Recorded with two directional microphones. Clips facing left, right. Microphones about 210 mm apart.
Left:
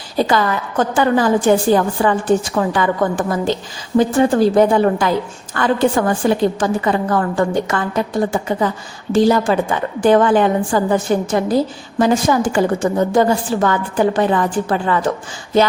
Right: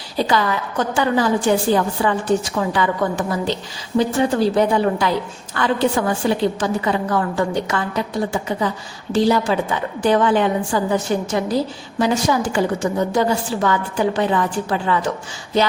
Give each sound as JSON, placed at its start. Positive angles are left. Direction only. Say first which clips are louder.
{"t": 0.2, "sound": "a woman's voice", "louder": "left 3 dB", "side_deg": 50}